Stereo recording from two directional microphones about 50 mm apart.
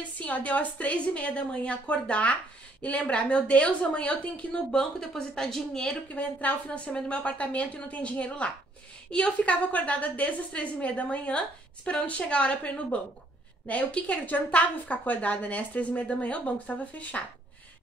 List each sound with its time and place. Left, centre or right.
0.2 s a woman's voice: left; by 5.9 s centre
6.1 s a woman's voice: left